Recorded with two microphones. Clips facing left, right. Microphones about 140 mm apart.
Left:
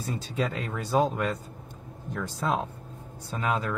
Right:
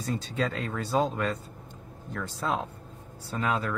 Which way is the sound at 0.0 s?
10° left (ahead or behind).